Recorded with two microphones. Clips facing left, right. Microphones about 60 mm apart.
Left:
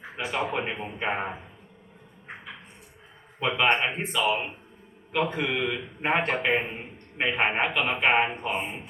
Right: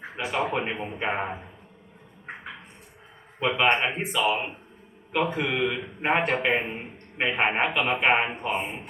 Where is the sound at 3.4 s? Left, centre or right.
Centre.